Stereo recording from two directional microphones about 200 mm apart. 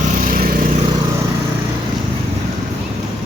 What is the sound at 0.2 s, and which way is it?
Lawn mower, 45° right (ahead or behind).